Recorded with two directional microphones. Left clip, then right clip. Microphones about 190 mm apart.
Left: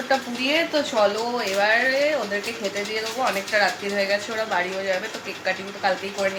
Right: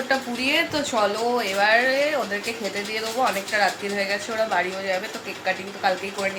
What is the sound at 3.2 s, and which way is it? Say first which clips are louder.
Speech: even; centre (ahead or behind).